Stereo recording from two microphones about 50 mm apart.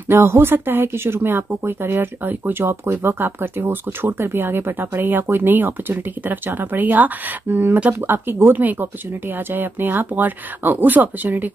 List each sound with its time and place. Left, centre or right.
0.1 s speech: right